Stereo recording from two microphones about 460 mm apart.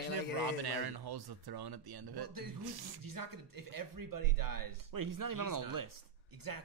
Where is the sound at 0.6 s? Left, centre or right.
Right.